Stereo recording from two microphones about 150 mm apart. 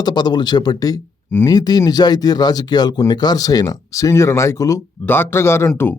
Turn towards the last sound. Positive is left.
turn(degrees=15)  # may be behind; listen again after turning